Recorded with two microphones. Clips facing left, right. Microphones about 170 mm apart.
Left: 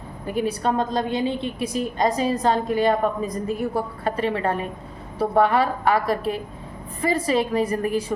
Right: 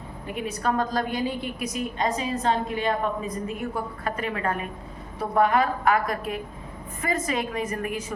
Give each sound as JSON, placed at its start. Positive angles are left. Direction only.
{"t": 0.3, "sound": "a woman's voice", "side_deg": 30}